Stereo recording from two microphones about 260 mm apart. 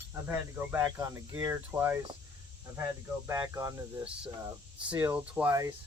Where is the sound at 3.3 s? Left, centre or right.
Centre.